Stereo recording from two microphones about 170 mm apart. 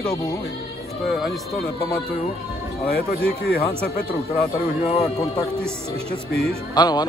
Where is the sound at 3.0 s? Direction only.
65° left (ahead or behind).